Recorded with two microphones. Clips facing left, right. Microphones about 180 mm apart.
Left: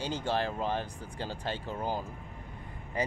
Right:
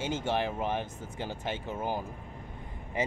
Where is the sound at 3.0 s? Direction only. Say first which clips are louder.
Right 1 dB; 20° right (ahead or behind).